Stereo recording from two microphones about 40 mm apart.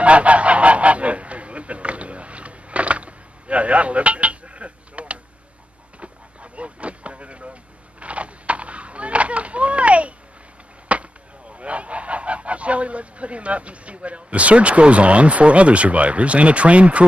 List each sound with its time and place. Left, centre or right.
0.0 s goose: right
5.9 s vehicle: right
8.0 s a sound: right
10.9 s chop: right
11.5 s goose: right